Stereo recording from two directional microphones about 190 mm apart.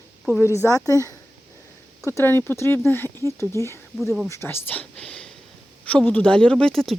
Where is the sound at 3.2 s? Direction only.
15° right (ahead or behind).